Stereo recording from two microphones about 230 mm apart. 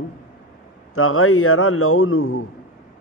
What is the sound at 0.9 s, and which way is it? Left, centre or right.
A man's voice, left.